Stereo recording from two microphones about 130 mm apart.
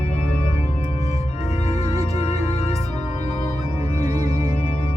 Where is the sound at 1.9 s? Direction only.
55° left (ahead or behind).